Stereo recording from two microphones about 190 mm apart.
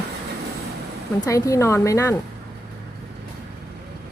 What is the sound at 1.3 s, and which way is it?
Speech, 15° left (ahead or behind).